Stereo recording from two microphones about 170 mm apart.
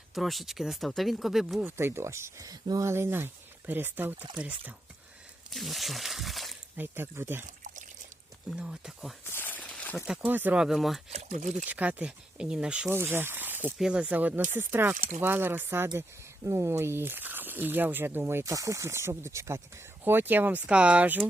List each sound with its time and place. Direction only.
0.1 s speech: centre (ahead or behind)
1.7 s speech: 15° right (ahead or behind); by 6.6 s centre (ahead or behind)
6.7 s speech: 10° right (ahead or behind)
7.4 s trickle: 45° right (ahead or behind)
8.4 s speech: 5° right (ahead or behind)
9.3 s a sound: 10° left (ahead or behind)
10.1 s speech: 10° right (ahead or behind)
11.1 s speech: 40° right (ahead or behind)
11.6 s speech: 10° right (ahead or behind)